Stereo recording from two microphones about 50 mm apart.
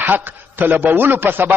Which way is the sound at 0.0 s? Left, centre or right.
Right.